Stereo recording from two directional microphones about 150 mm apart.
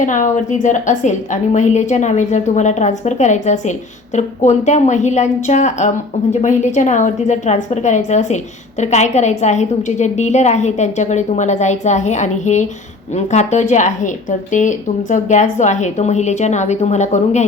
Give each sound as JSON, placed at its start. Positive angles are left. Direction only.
{"t": 0.0, "sound": "a woman's voice", "side_deg": 55}